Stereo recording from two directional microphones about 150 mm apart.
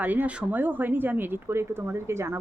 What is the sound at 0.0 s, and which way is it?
A woman's voice, 10° right (ahead or behind).